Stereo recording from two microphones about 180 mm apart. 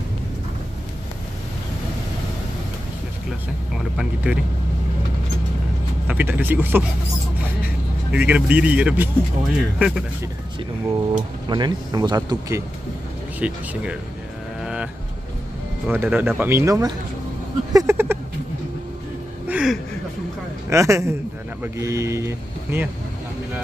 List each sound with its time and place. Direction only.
3.9 s speech: 5° right (ahead or behind)
6.0 s speech: 10° right (ahead or behind)
8.1 s speech: 5° right (ahead or behind)
11.4 s speech: 25° right (ahead or behind)
13.4 s speech: 5° right (ahead or behind)
14.6 s music: 5° right (ahead or behind)
15.9 s speech: 10° right (ahead or behind)
17.7 s a sound: 15° right (ahead or behind)
19.4 s a sound: 5° right (ahead or behind)
20.7 s speech: 15° right (ahead or behind)